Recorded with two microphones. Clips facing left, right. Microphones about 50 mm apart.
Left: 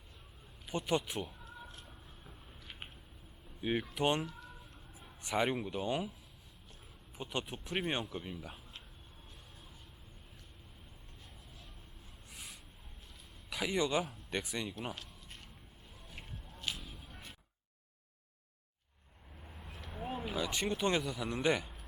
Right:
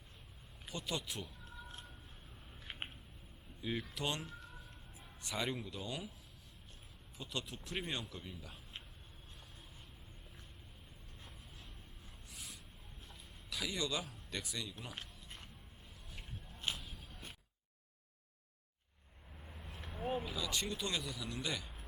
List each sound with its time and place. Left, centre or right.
0.7 s speech: left
3.6 s speech: left
5.4 s speech: left
7.2 s speech: left
12.3 s a sound: centre
13.5 s speech: left
14.7 s speech: left
16.7 s a sound: centre
19.4 s vehicle: centre
20.1 s a sound: left
20.7 s speech: left